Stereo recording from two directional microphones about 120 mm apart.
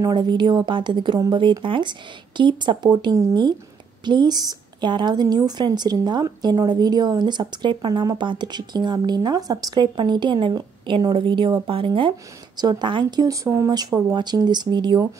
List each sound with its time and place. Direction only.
0.0 s a woman's voice: 35° right (ahead or behind)